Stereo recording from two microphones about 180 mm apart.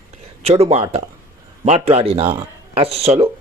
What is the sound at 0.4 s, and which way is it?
A man's voice, 35° right (ahead or behind).